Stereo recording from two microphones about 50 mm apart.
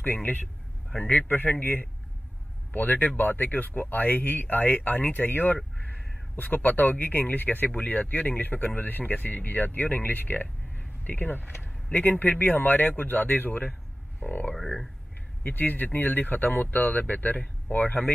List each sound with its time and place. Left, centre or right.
0.0 s speech: left
0.9 s a man's voice: left
1.3 s speech: left
15.4 s speech: left